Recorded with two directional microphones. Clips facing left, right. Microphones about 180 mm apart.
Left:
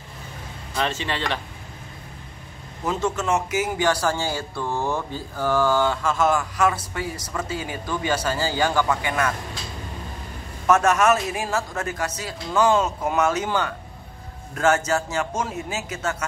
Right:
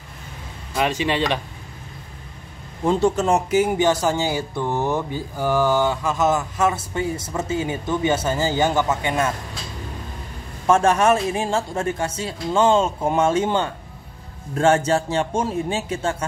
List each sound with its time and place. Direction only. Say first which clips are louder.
0.7 s a man's voice: right 5 dB; 15° right (ahead or behind)
2.8 s speech: right 6 dB; 30° right (ahead or behind)
10.7 s a man's voice: right 2 dB; 30° right (ahead or behind)